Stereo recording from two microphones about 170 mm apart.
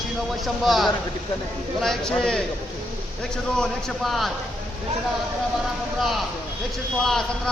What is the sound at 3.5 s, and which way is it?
Speech, 5° left (ahead or behind).